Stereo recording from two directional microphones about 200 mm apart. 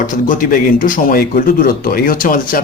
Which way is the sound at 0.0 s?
40° left (ahead or behind).